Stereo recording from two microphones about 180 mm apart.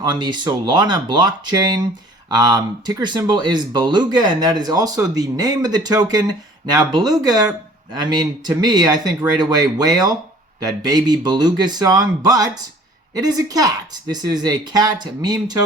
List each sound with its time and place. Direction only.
0.0 s speech: 25° right (ahead or behind)